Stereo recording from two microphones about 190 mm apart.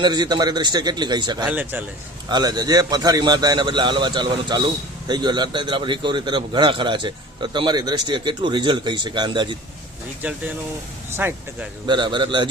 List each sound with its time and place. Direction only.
0.0 s a man's voice: 20° right (ahead or behind)
1.5 s speech: 10° right (ahead or behind)
2.3 s a man's voice: 20° right (ahead or behind)
11.1 s speech: 10° right (ahead or behind)
11.9 s a man's voice: 25° right (ahead or behind)